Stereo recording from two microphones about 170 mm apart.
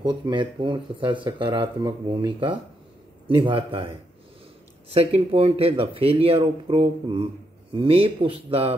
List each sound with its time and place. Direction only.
0.0 s speech: 25° right (ahead or behind)